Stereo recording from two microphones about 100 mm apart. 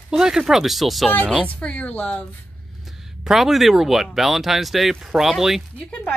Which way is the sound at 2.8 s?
5° right (ahead or behind).